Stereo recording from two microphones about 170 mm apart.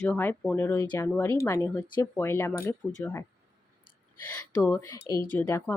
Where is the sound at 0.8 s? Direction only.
25° left (ahead or behind).